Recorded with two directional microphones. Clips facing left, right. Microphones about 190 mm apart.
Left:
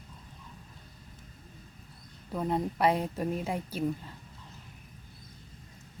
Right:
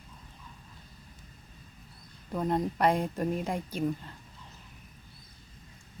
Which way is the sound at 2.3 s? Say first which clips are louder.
Right 1 dB; 5° left (ahead or behind).